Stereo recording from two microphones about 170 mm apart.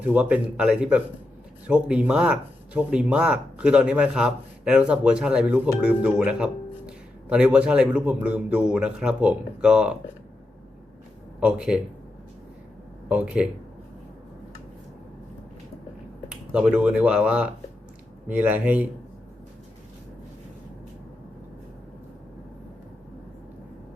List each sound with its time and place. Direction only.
0.0 s a man's voice: 10° right (ahead or behind)
11.3 s speech: 5° right (ahead or behind)
13.1 s a man's voice: 5° right (ahead or behind)
16.3 s a man's voice: 5° right (ahead or behind)